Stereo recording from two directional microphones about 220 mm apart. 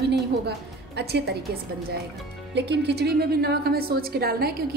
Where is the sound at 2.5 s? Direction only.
50° right (ahead or behind).